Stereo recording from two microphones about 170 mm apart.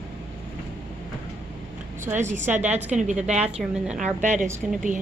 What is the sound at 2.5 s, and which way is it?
A woman's voice, 45° right (ahead or behind).